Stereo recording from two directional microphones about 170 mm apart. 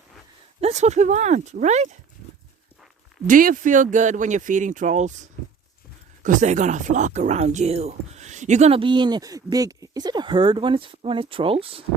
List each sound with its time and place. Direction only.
0.6 s speech: 40° right (ahead or behind)
3.2 s speech: 50° right (ahead or behind); by 11.9 s 35° right (ahead or behind)